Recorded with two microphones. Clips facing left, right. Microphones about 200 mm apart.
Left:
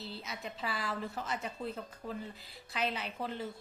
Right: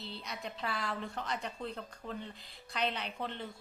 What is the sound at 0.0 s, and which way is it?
A woman's voice, centre (ahead or behind).